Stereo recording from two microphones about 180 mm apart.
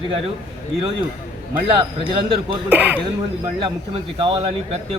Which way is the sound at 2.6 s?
10° right (ahead or behind).